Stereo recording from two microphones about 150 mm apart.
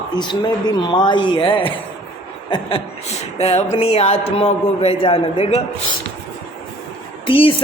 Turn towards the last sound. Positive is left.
turn(degrees=35)  # may be behind; listen again after turning